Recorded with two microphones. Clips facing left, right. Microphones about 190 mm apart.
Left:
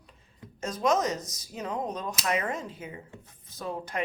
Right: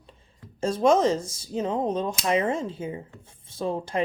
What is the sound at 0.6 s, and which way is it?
Speech, 30° right (ahead or behind).